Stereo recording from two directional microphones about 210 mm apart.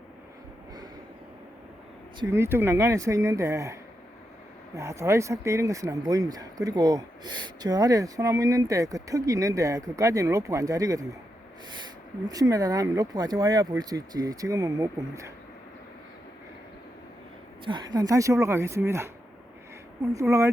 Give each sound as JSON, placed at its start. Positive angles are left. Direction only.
{"t": 2.1, "sound": "speech", "side_deg": -10}
{"t": 12.3, "sound": "speech", "side_deg": -15}
{"t": 17.7, "sound": "speech", "side_deg": -20}